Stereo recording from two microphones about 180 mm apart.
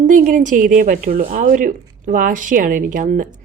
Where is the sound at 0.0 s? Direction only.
45° right (ahead or behind).